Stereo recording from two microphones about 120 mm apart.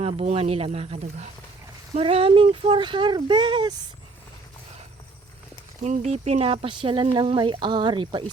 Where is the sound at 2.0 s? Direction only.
55° right (ahead or behind).